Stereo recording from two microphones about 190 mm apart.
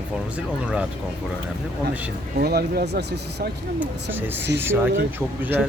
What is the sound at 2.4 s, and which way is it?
Speech, 55° right (ahead or behind).